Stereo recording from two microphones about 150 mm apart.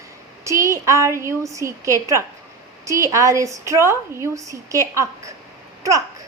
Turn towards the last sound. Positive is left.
turn(degrees=-20)  # may be behind; listen again after turning